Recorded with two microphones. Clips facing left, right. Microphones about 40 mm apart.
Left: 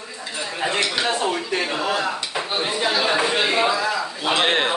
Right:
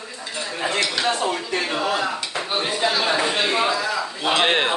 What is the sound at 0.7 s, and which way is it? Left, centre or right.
Speech, centre.